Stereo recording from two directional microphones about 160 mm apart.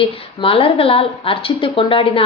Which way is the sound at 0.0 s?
35° left (ahead or behind).